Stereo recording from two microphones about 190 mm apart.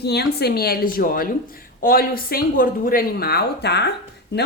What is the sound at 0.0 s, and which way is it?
Speech, 60° left (ahead or behind).